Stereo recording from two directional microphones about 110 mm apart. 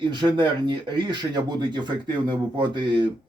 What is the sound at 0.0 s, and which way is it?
Speech, 40° right (ahead or behind).